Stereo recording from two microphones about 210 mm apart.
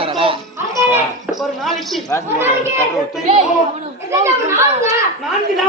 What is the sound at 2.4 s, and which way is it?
Speech, 10° right (ahead or behind).